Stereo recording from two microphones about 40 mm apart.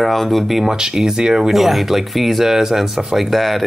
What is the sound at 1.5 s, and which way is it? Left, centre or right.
Speech, centre.